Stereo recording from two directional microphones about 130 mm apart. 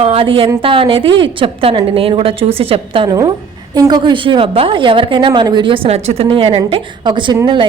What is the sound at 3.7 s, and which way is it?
A woman's voice, 30° right (ahead or behind).